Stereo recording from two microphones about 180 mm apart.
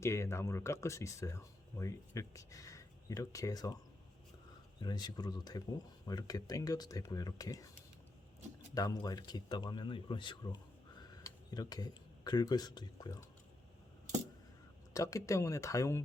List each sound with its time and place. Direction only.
0.0 s speech: 15° left (ahead or behind)
4.8 s speech: 25° left (ahead or behind)
8.7 s speech: 20° left (ahead or behind)
14.9 s speech: 15° left (ahead or behind)